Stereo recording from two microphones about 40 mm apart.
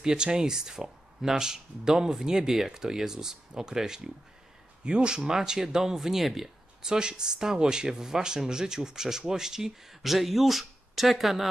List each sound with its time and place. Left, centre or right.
0.0 s speech: centre
6.8 s speech: centre